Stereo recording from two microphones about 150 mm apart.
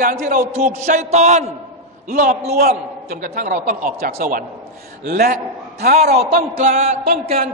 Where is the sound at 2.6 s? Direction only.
90° right; by 3.8 s 60° right (ahead or behind).